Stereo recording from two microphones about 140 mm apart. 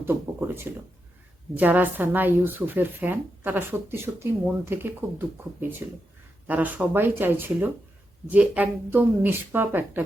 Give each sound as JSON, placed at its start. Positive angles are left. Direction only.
{"t": 0.0, "sound": "speech", "side_deg": -15}